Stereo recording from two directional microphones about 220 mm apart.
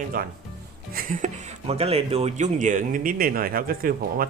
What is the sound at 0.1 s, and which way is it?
Speech, 40° right (ahead or behind).